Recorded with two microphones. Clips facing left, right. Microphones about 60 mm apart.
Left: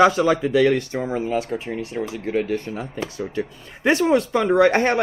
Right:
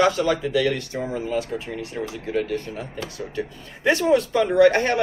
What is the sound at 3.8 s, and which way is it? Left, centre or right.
Speech, left.